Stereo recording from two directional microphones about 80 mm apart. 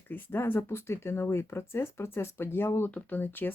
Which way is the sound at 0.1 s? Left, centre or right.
Left.